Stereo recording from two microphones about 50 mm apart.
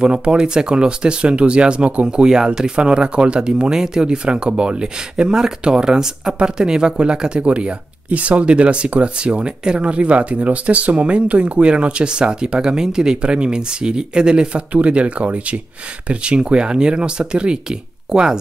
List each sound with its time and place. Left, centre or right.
0.0 s speech: centre